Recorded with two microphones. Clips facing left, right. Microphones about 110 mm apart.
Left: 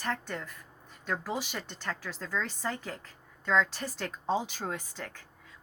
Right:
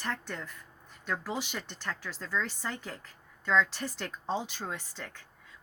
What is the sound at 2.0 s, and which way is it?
A woman's voice, 40° left (ahead or behind).